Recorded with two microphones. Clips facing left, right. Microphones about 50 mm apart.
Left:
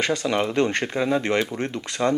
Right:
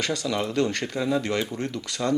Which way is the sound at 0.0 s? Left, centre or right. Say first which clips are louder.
Left 4 dB; left.